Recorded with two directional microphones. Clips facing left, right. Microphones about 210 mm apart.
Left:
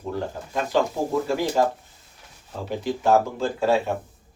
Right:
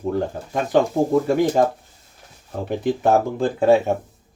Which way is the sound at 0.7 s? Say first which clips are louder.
Right 6 dB; 55° right (ahead or behind).